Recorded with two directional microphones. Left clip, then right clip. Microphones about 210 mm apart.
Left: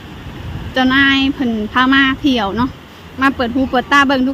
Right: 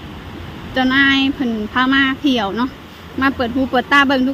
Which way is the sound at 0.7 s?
10° left (ahead or behind).